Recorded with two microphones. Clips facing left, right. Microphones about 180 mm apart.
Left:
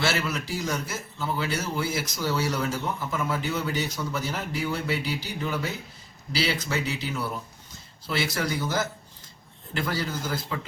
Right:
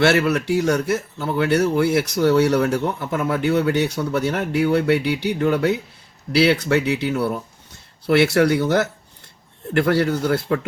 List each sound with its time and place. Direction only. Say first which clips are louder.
0.0 s a man's voice: right 11 dB; 65° right (ahead or behind)